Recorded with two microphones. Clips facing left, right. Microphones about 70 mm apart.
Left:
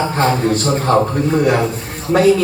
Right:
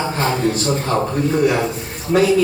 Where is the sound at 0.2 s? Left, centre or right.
Left.